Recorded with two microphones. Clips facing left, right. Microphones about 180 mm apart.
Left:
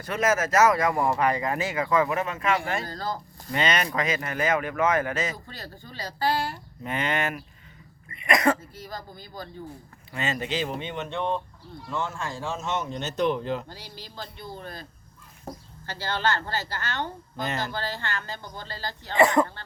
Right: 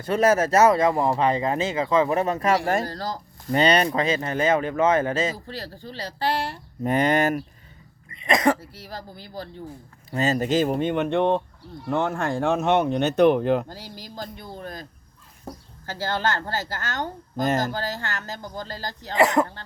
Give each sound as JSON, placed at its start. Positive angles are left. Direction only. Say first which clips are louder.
{"t": 0.0, "sound": "speech", "louder": "right 5 dB", "side_deg": -30}
{"t": 6.8, "sound": "speech", "louder": "right 8 dB", "side_deg": -40}
{"t": 8.1, "sound": "a woman's voice", "louder": "right 2 dB", "side_deg": -25}
{"t": 15.9, "sound": "a woman's voice", "louder": "right 2 dB", "side_deg": -45}